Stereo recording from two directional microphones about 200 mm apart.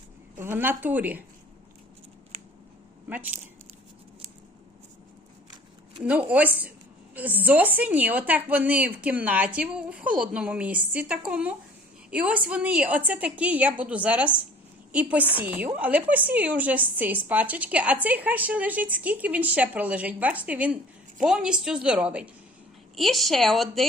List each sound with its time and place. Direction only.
0.3 s a woman's voice: 10° right (ahead or behind)
6.0 s a woman's voice: 5° right (ahead or behind)